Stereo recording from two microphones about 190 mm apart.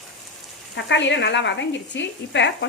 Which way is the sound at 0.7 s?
70° left (ahead or behind).